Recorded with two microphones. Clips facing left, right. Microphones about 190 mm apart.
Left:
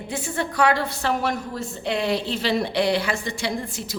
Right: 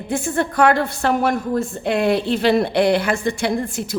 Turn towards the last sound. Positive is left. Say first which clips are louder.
# right 6 dB
turn(degrees=-55)  # may be behind; listen again after turning